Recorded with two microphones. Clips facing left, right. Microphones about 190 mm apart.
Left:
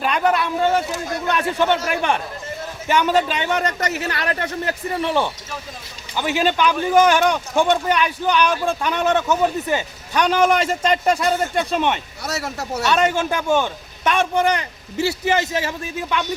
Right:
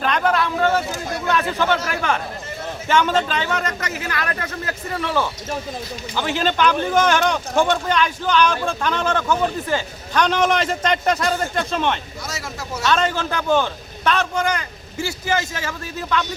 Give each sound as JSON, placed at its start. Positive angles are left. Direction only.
{"t": 0.0, "sound": "a sound", "side_deg": 10}
{"t": 1.3, "sound": "speech", "side_deg": 15}
{"t": 3.6, "sound": "a man's voice", "side_deg": 35}
{"t": 5.0, "sound": "a man's voice", "side_deg": 20}
{"t": 12.2, "sound": "speech", "side_deg": 65}
{"t": 12.9, "sound": "a man's voice", "side_deg": 10}